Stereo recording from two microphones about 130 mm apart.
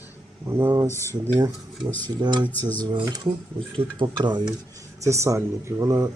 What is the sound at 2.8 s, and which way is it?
Speech, 35° right (ahead or behind).